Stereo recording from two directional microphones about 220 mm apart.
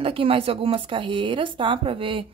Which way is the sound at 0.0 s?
25° right (ahead or behind).